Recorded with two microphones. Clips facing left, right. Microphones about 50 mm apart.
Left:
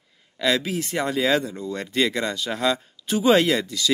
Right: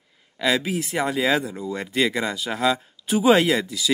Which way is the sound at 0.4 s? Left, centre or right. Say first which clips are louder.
Even; centre.